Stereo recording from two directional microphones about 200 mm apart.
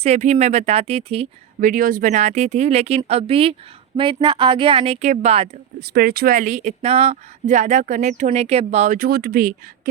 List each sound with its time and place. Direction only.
0.0 s speech: 35° right (ahead or behind)
1.6 s a woman's voice: 45° right (ahead or behind)
5.8 s speech: 50° right (ahead or behind)